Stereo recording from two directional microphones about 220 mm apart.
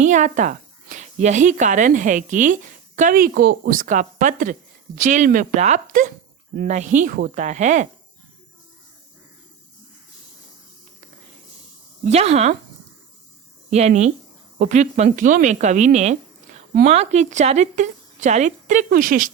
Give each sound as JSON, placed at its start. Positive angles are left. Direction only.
{"t": 0.0, "sound": "a woman's voice", "side_deg": -35}
{"t": 12.0, "sound": "speech", "side_deg": -30}
{"t": 13.7, "sound": "a woman's voice", "side_deg": -30}